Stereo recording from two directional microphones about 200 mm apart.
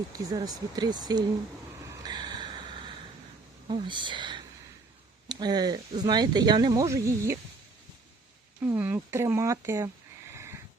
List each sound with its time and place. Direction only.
0.3 s speech: 20° right (ahead or behind)
1.9 s a sound: 20° right (ahead or behind)
3.7 s speech: 25° right (ahead or behind)
8.6 s speech: 10° right (ahead or behind)
10.3 s dog: 15° right (ahead or behind)